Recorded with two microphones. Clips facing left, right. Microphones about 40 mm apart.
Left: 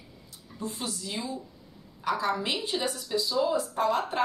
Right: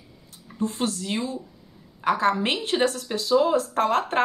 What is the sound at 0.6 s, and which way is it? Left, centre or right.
Speech, right.